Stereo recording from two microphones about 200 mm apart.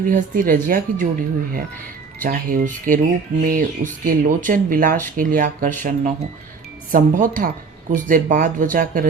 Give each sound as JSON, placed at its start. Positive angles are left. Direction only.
{"t": 0.0, "sound": "speech", "side_deg": -45}
{"t": 2.1, "sound": "speech", "side_deg": -45}